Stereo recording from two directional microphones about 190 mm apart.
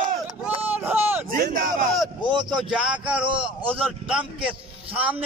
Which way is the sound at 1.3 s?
50° right (ahead or behind).